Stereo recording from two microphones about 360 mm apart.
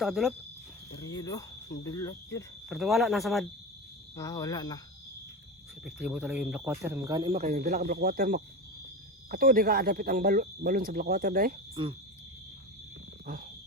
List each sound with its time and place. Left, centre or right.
0.0 s speech: centre
5.8 s speech: centre
13.2 s a sound: right